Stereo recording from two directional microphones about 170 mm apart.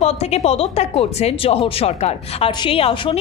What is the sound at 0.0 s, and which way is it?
Speech, 40° left (ahead or behind).